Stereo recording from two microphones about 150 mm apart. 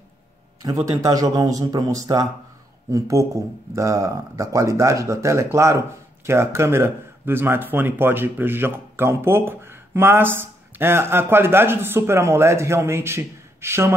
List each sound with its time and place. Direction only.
0.8 s speech: 25° right (ahead or behind)